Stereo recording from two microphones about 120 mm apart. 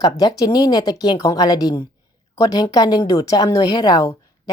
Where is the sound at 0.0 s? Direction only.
35° left (ahead or behind).